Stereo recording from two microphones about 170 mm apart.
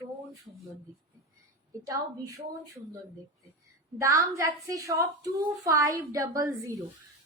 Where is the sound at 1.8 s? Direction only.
20° right (ahead or behind).